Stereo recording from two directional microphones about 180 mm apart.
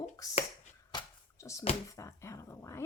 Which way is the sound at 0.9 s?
20° left (ahead or behind).